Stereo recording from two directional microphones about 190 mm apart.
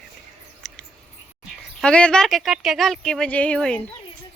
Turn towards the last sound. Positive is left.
turn(degrees=5)  # may be behind; listen again after turning